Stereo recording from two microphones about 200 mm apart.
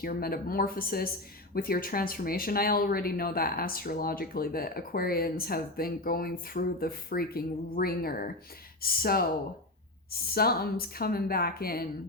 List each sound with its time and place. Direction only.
0.0 s speech: 50° left (ahead or behind)